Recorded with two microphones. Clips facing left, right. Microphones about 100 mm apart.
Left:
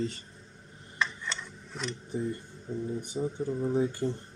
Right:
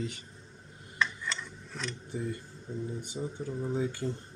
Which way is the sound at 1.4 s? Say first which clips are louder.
Left 2 dB; 10° left (ahead or behind).